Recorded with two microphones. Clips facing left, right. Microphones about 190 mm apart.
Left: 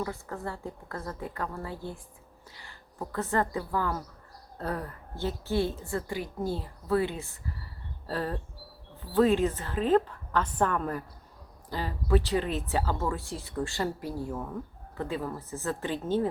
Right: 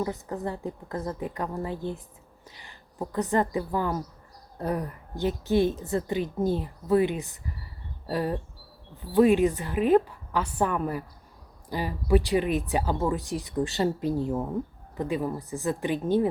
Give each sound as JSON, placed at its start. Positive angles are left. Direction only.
{"t": 0.0, "sound": "a woman's voice", "side_deg": -20}